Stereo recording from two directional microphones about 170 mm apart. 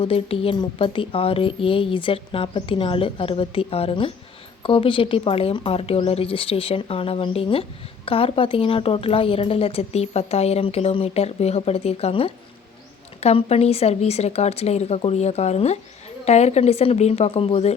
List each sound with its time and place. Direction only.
0.0 s a woman's voice: 35° left (ahead or behind)